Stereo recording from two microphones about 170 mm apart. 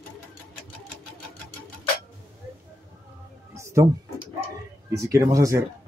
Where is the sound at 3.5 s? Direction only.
15° right (ahead or behind).